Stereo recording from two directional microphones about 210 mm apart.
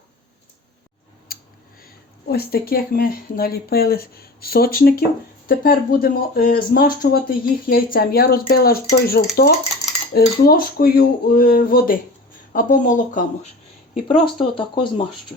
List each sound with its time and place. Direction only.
1.3 s a sound: 45° left (ahead or behind)
1.8 s speech: 50° left (ahead or behind)
14.3 s speech: 25° left (ahead or behind)